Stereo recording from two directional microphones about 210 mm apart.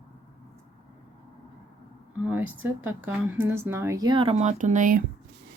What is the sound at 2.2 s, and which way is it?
Speech, 10° right (ahead or behind).